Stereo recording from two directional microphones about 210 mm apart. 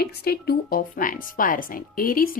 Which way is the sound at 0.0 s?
50° left (ahead or behind).